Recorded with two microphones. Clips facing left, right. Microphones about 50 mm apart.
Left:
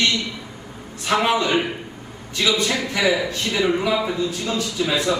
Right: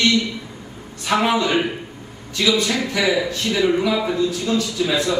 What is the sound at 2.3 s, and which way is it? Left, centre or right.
Speech, centre.